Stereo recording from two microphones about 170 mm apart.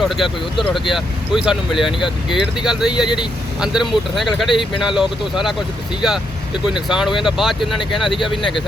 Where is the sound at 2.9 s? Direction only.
25° left (ahead or behind).